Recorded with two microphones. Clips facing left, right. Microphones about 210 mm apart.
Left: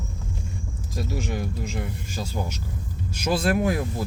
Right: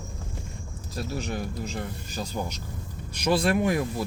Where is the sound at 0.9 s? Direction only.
10° left (ahead or behind).